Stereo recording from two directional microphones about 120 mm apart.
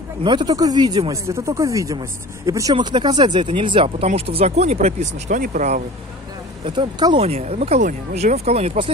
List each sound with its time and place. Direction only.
0.2 s speech: 40° right (ahead or behind); by 5.8 s 80° right
6.6 s speech: 45° right (ahead or behind)
7.2 s speech: 60° right (ahead or behind)